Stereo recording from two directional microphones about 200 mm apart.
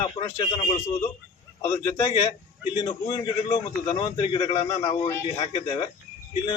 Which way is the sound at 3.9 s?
20° left (ahead or behind).